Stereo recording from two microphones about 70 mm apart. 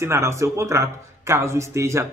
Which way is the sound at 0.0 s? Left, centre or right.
Right.